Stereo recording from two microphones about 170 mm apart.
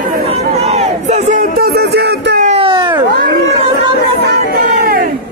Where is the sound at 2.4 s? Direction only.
35° right (ahead or behind).